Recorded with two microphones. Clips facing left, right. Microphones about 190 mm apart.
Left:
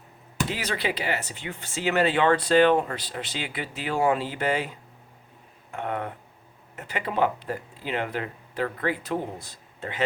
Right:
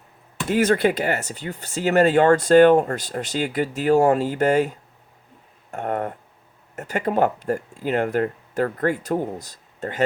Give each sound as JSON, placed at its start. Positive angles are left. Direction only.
{"t": 0.4, "sound": "speech", "side_deg": -50}